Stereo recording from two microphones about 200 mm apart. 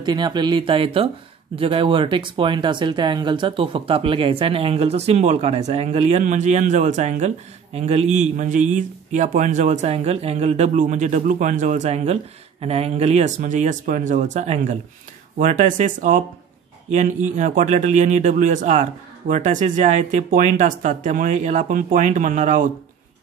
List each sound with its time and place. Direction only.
0.0 s speech: 20° right (ahead or behind); by 22.7 s 35° right (ahead or behind)